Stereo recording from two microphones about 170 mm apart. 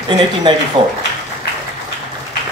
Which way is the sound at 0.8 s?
30° right (ahead or behind).